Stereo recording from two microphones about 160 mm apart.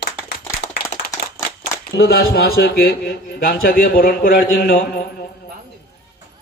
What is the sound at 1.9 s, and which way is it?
A man's voice, 80° left.